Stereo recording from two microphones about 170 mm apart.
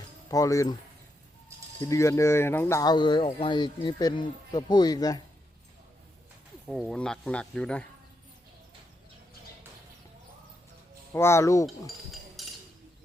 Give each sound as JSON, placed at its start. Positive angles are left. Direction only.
{"t": 0.3, "sound": "speech", "side_deg": 20}
{"t": 1.8, "sound": "speech", "side_deg": 15}
{"t": 6.7, "sound": "speech", "side_deg": 0}
{"t": 11.1, "sound": "speech", "side_deg": 15}
{"t": 12.4, "sound": "chink", "side_deg": 0}